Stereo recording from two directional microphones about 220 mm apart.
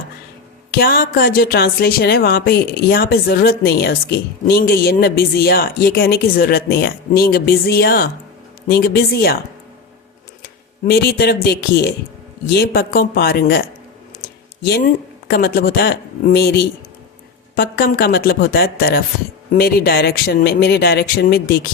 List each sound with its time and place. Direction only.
0.7 s speech: 45° left (ahead or behind)
10.8 s speech: 45° left (ahead or behind)
14.2 s a sound: 45° left (ahead or behind)
15.3 s speech: 45° left (ahead or behind)